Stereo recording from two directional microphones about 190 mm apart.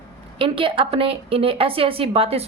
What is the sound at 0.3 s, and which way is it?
A woman's voice, 30° right (ahead or behind).